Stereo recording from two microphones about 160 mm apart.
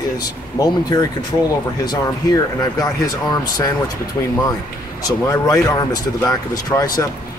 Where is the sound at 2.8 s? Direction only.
25° left (ahead or behind).